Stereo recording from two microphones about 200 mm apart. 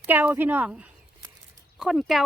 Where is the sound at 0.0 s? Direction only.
10° right (ahead or behind).